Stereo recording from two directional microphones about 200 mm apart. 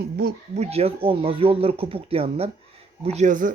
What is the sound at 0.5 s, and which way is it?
Speech, 30° right (ahead or behind).